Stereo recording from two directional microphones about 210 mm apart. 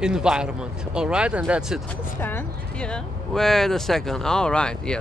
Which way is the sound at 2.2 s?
10° left (ahead or behind).